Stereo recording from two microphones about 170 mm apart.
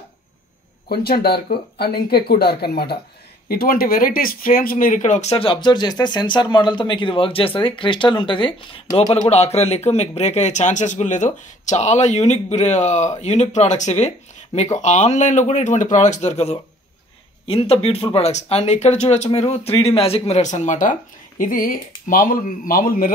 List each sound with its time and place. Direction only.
0.8 s speech: 65° left (ahead or behind)